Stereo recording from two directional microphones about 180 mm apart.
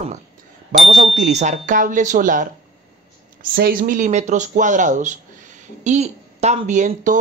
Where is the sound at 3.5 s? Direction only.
55° right (ahead or behind).